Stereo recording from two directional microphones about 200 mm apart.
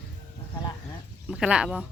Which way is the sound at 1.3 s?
5° right (ahead or behind).